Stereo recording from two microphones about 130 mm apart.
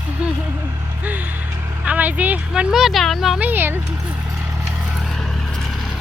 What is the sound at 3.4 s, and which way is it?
Speech, 15° right (ahead or behind).